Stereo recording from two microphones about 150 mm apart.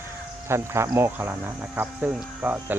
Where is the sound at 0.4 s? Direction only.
15° right (ahead or behind).